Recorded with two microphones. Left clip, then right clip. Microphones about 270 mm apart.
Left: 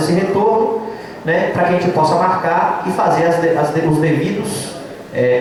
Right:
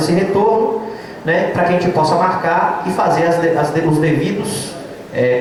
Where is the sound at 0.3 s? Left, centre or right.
Centre.